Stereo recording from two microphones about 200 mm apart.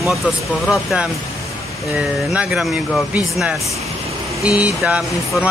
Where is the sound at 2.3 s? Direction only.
5° right (ahead or behind).